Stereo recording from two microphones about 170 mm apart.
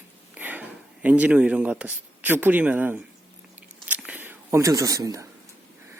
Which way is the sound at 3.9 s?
10° right (ahead or behind).